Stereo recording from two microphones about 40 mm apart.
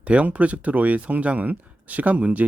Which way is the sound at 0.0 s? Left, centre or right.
Right.